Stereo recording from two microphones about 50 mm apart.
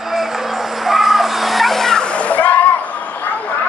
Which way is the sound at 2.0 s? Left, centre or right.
Left.